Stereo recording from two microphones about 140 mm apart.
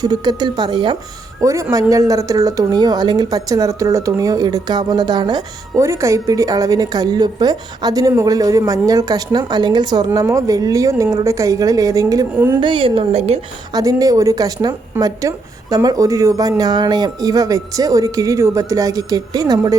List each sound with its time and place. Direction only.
0.0 s speech: 30° right (ahead or behind)
1.4 s a woman's voice: 20° right (ahead or behind)
12.5 s speech: 35° right (ahead or behind)
13.7 s a woman's voice: 25° right (ahead or behind)